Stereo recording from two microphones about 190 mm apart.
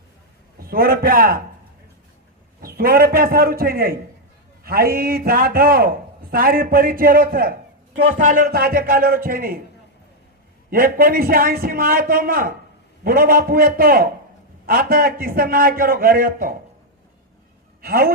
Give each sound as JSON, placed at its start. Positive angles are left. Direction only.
{"t": 0.6, "sound": "a man's voice", "side_deg": -50}
{"t": 2.6, "sound": "a man's voice", "side_deg": -50}
{"t": 10.7, "sound": "a man's voice", "side_deg": -50}
{"t": 17.8, "sound": "a man's voice", "side_deg": -50}